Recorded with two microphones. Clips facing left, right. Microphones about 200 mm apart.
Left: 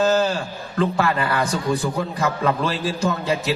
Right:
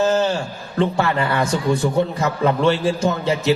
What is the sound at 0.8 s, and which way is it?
A man's voice, 25° right (ahead or behind).